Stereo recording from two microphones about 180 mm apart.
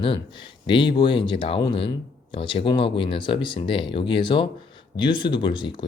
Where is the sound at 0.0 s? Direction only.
30° left (ahead or behind).